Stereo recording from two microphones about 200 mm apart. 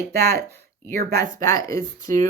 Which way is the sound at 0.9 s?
50° right (ahead or behind).